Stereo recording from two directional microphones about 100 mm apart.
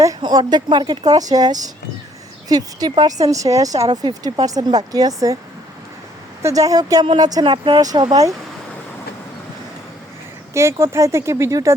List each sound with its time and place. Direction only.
0.2 s speech: 45° right (ahead or behind)
6.4 s speech: 35° right (ahead or behind)
7.0 s speech: 55° right (ahead or behind)
7.8 s speech: 40° right (ahead or behind)
10.5 s speech: 30° right (ahead or behind)